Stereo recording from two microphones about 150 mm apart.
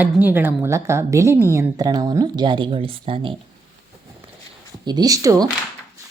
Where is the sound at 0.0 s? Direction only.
10° right (ahead or behind); by 3.3 s 35° right (ahead or behind).